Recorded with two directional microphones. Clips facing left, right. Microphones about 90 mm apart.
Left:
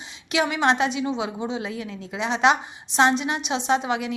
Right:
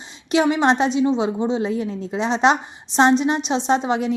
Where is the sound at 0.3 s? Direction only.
35° right (ahead or behind).